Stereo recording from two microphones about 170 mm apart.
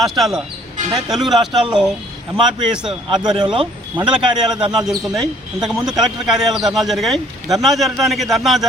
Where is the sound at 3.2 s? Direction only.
25° right (ahead or behind).